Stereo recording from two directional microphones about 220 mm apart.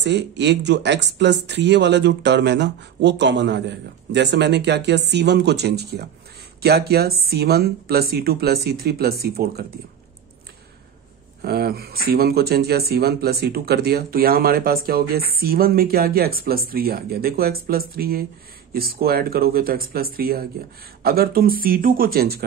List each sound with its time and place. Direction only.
0.0 s speech: 50° right (ahead or behind)
11.4 s speech: 45° right (ahead or behind)